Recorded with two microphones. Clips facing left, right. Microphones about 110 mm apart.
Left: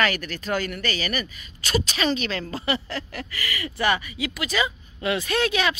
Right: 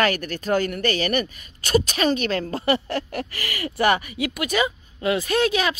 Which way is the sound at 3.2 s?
30° right (ahead or behind).